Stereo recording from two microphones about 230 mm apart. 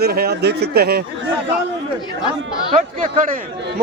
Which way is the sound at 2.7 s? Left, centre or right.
Right.